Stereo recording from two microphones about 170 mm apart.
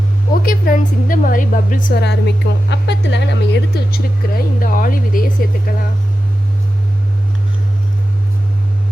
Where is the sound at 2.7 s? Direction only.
90° left; by 5.3 s 55° left (ahead or behind).